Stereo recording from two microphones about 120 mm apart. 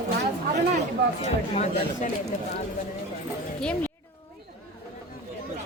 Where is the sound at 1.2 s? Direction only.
70° left (ahead or behind).